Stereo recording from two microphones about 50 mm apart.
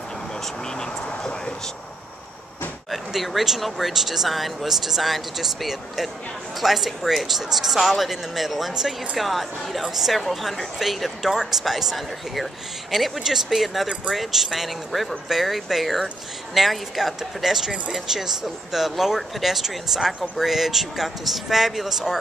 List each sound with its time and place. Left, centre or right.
0.4 s vehicle: centre
2.9 s a woman's voice: centre